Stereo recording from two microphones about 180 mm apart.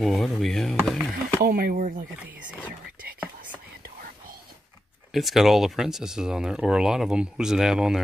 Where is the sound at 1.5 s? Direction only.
55° right (ahead or behind).